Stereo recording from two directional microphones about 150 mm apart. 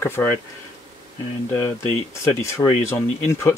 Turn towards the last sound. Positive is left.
turn(degrees=20)  # may be behind; listen again after turning